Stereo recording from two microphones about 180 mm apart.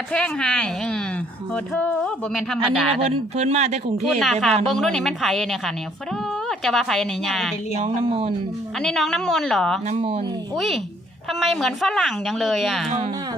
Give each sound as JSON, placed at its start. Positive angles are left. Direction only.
{"t": 0.1, "sound": "a woman's voice", "side_deg": 5}
{"t": 3.3, "sound": "speech", "side_deg": -40}
{"t": 4.0, "sound": "a woman's voice", "side_deg": 0}
{"t": 7.8, "sound": "speech", "side_deg": -35}
{"t": 8.8, "sound": "a woman's voice", "side_deg": 5}
{"t": 9.8, "sound": "speech", "side_deg": -35}
{"t": 10.5, "sound": "a woman's voice", "side_deg": 0}
{"t": 12.9, "sound": "speech", "side_deg": -40}